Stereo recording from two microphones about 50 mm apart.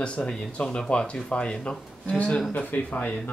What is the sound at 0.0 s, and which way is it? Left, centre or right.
Speech, left.